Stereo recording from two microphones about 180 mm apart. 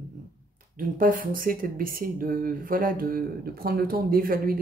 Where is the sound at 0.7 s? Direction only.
50° right (ahead or behind).